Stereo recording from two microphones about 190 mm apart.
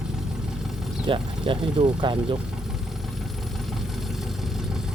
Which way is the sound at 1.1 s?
25° right (ahead or behind).